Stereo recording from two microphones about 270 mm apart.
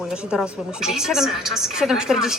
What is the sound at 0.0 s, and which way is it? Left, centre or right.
A woman's voice, centre.